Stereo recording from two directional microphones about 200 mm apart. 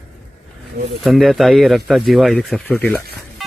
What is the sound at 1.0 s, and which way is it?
Speech, centre (ahead or behind).